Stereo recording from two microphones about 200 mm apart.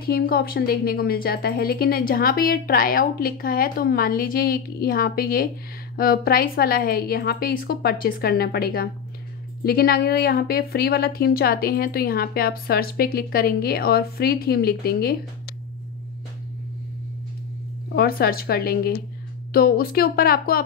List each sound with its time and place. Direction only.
0.0 s a woman's voice: 50° left (ahead or behind)
17.9 s a woman's voice: 50° left (ahead or behind)